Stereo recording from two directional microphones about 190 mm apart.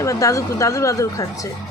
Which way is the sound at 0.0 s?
15° left (ahead or behind).